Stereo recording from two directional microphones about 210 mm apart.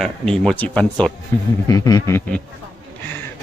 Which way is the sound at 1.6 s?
15° left (ahead or behind).